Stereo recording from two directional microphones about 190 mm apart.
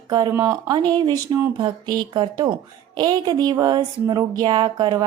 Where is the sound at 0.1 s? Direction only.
20° right (ahead or behind).